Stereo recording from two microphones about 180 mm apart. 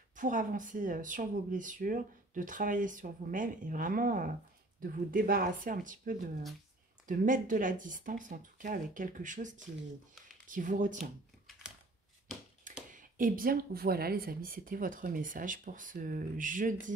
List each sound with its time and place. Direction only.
0.1 s speech: 45° right (ahead or behind)
12.9 s speech: 50° right (ahead or behind)